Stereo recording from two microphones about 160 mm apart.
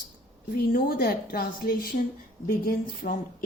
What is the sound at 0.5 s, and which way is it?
A woman's voice, 65° left (ahead or behind).